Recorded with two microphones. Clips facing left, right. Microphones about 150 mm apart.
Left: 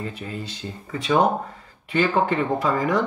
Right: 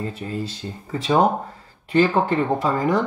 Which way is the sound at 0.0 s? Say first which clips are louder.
Right 4 dB; 35° right (ahead or behind).